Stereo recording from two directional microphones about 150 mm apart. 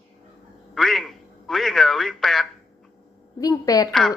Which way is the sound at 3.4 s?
25° left (ahead or behind).